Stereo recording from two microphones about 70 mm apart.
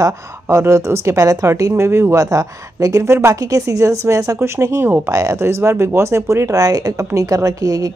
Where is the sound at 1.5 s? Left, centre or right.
Right.